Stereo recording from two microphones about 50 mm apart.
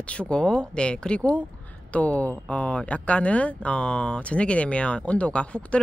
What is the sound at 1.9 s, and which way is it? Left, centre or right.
Speech, left.